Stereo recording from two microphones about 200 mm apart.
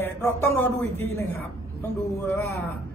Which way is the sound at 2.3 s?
15° left (ahead or behind).